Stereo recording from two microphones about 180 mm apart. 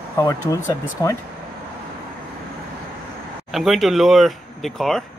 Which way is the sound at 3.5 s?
Centre (ahead or behind).